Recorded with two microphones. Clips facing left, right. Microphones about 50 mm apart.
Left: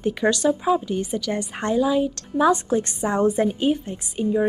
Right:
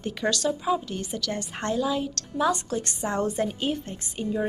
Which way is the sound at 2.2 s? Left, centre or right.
Centre.